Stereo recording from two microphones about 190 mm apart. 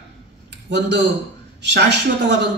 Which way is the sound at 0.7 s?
65° right (ahead or behind).